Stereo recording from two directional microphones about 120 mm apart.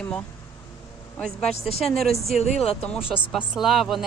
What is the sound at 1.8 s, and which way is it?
Speech, centre (ahead or behind).